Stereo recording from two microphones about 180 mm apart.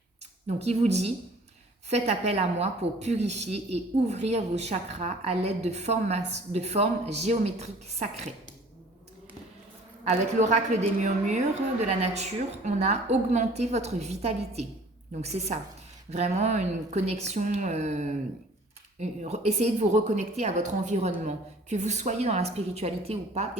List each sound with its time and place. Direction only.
0.4 s speech: 35° right (ahead or behind)
10.0 s speech: 40° right (ahead or behind)